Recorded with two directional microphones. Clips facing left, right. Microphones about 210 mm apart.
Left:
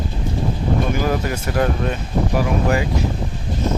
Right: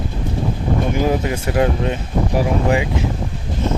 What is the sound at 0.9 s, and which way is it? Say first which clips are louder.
Speech: right 2 dB; 20° right (ahead or behind).